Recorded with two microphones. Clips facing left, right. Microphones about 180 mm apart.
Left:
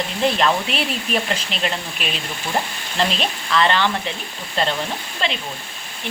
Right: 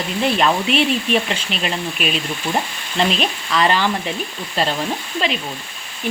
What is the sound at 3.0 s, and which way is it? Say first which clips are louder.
Speech: right 3 dB; 5° right (ahead or behind).